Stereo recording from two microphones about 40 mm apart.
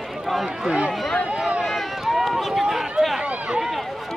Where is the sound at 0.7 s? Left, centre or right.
Right.